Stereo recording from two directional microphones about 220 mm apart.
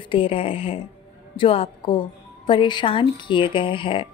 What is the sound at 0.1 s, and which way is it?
A woman's voice, 25° left (ahead or behind).